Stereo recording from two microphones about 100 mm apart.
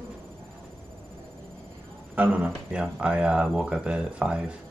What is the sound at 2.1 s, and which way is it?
Speech, 15° right (ahead or behind).